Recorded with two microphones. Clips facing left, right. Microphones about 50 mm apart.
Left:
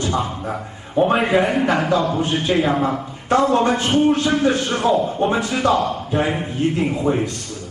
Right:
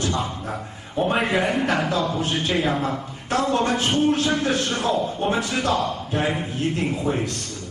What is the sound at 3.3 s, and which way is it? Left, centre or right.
A man's voice, centre.